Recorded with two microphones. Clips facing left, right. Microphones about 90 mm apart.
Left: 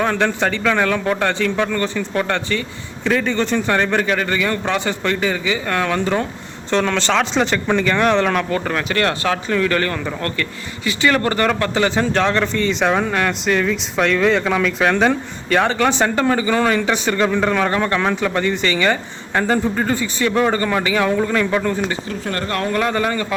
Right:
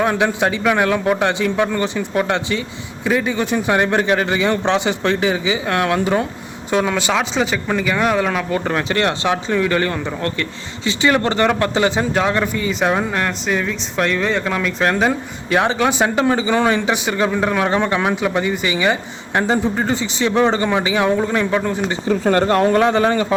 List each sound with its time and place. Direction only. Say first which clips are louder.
0.0 s speech: right 1 dB; 10° right (ahead or behind)
8.4 s speech: right 1 dB; 20° right (ahead or behind)